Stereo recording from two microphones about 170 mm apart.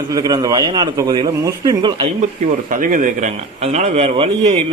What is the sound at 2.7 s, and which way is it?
A man's voice, 50° right (ahead or behind).